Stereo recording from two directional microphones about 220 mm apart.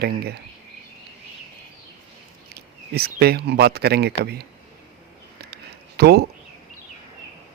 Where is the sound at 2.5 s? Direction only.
45° right (ahead or behind).